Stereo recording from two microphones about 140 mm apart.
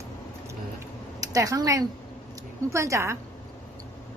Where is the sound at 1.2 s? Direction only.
25° right (ahead or behind).